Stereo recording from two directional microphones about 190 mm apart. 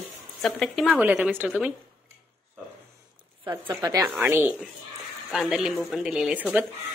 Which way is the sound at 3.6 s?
20° right (ahead or behind).